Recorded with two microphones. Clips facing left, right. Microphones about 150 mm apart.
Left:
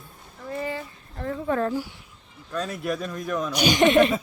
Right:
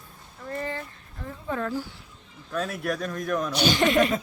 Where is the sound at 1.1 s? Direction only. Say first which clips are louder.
Left 7 dB; 65° left (ahead or behind).